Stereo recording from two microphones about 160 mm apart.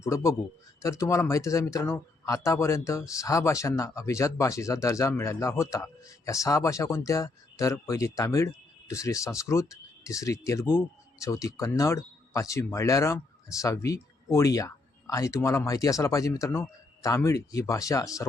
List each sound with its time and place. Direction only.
0.0 s a man's voice: 20° left (ahead or behind)